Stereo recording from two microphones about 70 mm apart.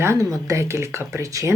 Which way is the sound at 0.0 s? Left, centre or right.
Right.